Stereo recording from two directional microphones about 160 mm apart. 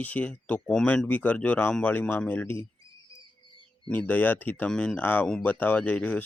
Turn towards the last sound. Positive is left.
turn(degrees=5)  # may be behind; listen again after turning